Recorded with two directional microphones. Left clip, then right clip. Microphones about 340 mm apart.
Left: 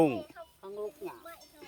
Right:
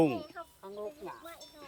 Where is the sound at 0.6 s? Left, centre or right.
Left.